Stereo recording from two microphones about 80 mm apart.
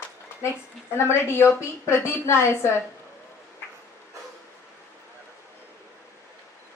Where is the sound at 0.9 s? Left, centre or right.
Left.